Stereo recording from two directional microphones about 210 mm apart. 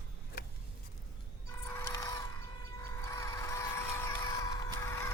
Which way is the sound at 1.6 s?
15° left (ahead or behind).